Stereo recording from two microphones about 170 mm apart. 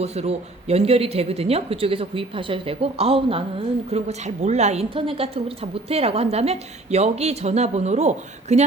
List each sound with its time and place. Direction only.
0.0 s a woman's voice: 40° right (ahead or behind)